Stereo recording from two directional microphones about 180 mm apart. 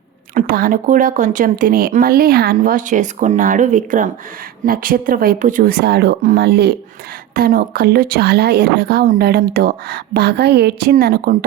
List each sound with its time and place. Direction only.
0.3 s a woman's voice: 55° right (ahead or behind)